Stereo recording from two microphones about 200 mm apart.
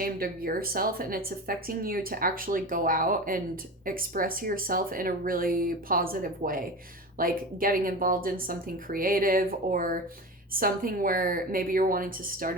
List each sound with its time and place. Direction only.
0.0 s a woman's voice: 45° right (ahead or behind)